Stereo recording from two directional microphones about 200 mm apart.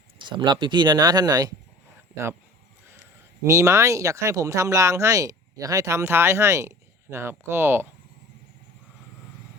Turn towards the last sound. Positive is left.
turn(degrees=-10)  # may be behind; listen again after turning